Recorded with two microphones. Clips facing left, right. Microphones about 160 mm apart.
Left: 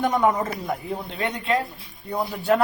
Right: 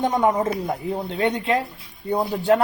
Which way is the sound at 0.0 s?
30° right (ahead or behind).